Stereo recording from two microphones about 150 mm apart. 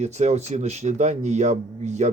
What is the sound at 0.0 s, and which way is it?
Speech, 45° right (ahead or behind).